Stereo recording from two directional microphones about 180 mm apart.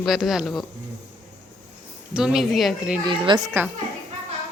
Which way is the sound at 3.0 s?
25° right (ahead or behind).